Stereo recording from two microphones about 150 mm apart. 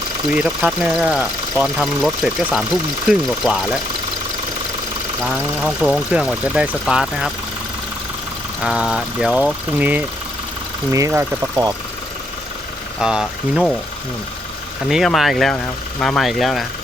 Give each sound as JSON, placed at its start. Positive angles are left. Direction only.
{"t": 0.3, "sound": "speech", "side_deg": -5}
{"t": 5.5, "sound": "speech", "side_deg": -5}
{"t": 8.6, "sound": "speech", "side_deg": -5}
{"t": 13.0, "sound": "speech", "side_deg": -5}
{"t": 14.8, "sound": "speech", "side_deg": 0}